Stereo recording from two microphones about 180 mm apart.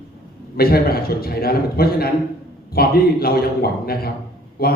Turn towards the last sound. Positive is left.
turn(degrees=55)  # may be behind; listen again after turning